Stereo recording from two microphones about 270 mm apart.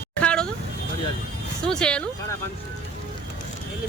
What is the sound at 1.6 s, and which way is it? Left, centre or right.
Speech, centre.